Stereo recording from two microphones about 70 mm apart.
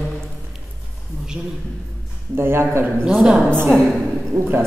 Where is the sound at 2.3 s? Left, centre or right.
Right.